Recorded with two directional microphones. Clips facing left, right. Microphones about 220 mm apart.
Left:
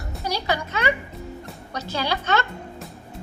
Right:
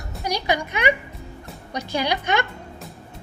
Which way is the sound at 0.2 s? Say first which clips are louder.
Right 2 dB; 15° right (ahead or behind).